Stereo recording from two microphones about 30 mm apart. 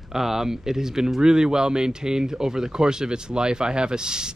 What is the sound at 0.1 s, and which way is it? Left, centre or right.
Speech, centre.